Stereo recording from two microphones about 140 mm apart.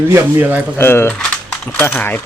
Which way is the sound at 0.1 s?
15° right (ahead or behind).